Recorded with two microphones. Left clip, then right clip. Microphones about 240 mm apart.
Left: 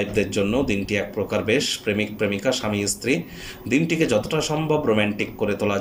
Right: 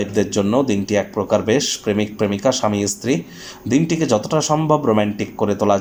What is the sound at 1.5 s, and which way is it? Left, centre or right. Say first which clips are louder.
Speech: right 3 dB; right.